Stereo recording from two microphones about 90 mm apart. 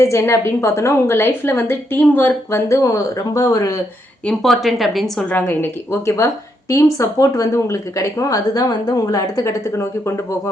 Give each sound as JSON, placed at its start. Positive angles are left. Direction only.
{"t": 0.0, "sound": "a woman's voice", "side_deg": 35}
{"t": 4.3, "sound": "a woman's voice", "side_deg": 0}
{"t": 5.3, "sound": "a woman's voice", "side_deg": 25}